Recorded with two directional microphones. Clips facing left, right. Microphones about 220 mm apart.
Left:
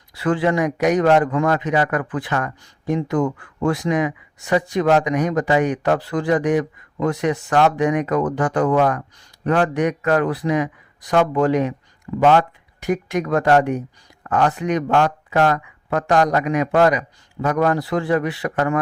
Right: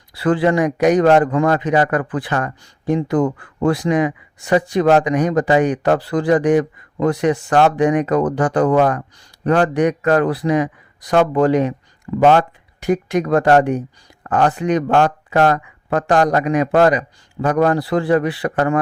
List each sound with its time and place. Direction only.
0.1 s a man's voice: 35° right (ahead or behind)